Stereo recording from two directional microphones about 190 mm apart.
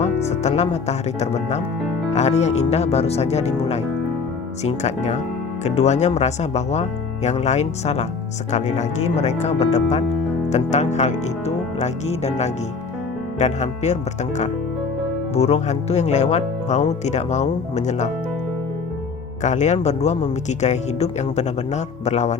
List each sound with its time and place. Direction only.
0.0 s speech: 35° left (ahead or behind)
19.4 s speech: 40° left (ahead or behind)